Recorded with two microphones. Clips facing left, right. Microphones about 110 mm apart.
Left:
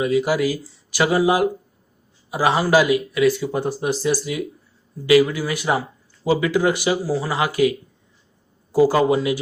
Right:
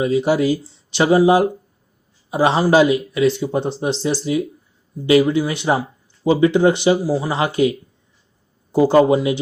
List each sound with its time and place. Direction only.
0.0 s a man's voice: 30° right (ahead or behind)